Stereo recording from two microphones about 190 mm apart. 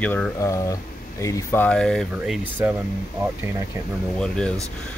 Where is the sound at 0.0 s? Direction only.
10° left (ahead or behind).